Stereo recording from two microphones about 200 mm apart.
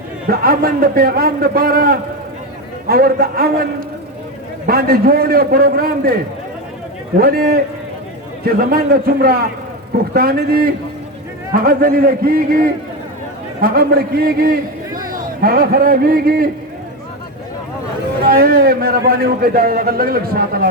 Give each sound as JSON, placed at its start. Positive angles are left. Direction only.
{"t": 0.3, "sound": "a man's voice", "side_deg": -50}
{"t": 7.2, "sound": "a man's voice", "side_deg": -50}
{"t": 18.3, "sound": "a man's voice", "side_deg": -50}